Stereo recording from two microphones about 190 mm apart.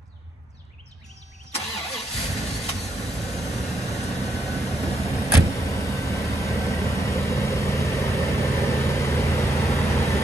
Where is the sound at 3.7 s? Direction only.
35° left (ahead or behind).